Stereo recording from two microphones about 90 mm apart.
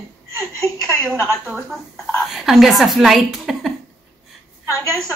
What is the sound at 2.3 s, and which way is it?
A woman's voice, 5° right (ahead or behind).